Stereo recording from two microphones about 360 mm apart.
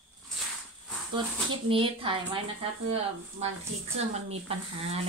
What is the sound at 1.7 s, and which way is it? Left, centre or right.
Speech, centre.